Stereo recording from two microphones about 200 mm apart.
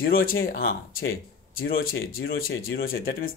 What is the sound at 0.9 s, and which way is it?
Speech, 85° left.